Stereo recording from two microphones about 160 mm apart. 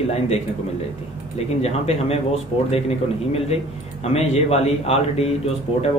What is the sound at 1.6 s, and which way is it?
Speech, 40° left (ahead or behind).